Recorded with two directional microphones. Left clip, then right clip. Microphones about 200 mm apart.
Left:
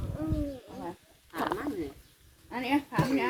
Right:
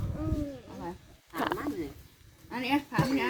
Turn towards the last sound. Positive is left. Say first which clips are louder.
# even
turn(degrees=-55)  # may be behind; listen again after turning